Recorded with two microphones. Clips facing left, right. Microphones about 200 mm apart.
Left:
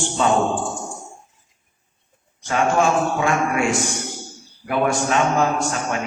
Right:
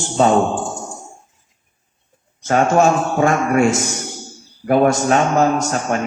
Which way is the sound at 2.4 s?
40° right (ahead or behind).